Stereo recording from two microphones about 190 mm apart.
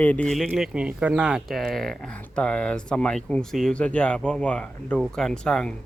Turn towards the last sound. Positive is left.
turn(degrees=5)  # may be behind; listen again after turning